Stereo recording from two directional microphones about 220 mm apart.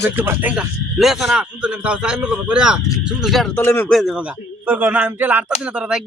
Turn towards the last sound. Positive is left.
turn(degrees=-5)  # may be behind; listen again after turning